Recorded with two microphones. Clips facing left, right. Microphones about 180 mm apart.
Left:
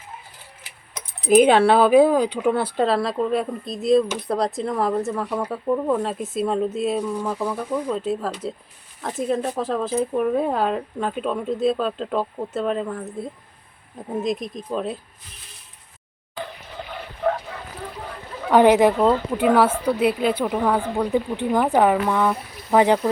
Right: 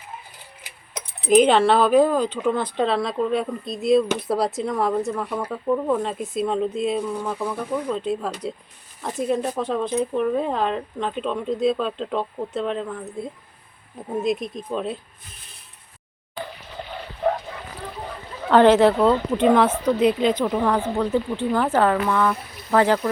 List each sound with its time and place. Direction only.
1.4 s speech: 10° left (ahead or behind)
18.5 s speech: 10° left (ahead or behind)